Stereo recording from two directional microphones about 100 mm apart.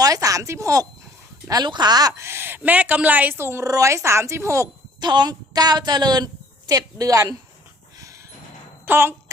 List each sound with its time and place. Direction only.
0.0 s speech: 35° right (ahead or behind)
1.5 s speech: 45° right (ahead or behind)
2.1 s speech: 25° right (ahead or behind)
4.9 s a woman's voice: 45° right (ahead or behind)
7.9 s a sound: 30° right (ahead or behind)
8.9 s speech: 25° right (ahead or behind)